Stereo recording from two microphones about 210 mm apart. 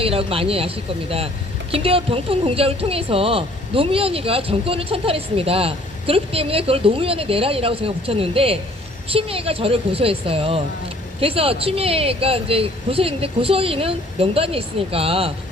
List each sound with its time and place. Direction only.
0.0 s speech: 25° right (ahead or behind)
1.7 s speech: 25° right (ahead or behind)